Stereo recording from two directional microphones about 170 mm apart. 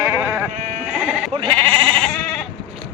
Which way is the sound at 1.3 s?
25° right (ahead or behind).